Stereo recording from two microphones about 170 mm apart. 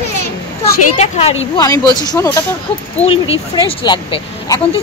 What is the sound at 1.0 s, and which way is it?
Speech, 35° left (ahead or behind).